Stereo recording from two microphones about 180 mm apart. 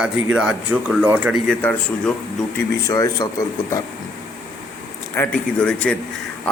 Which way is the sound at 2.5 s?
20° left (ahead or behind).